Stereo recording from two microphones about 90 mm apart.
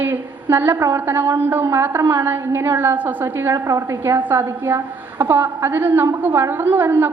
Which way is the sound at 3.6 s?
35° right (ahead or behind).